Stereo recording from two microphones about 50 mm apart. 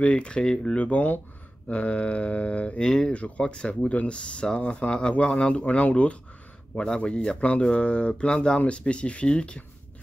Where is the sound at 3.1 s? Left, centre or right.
Left.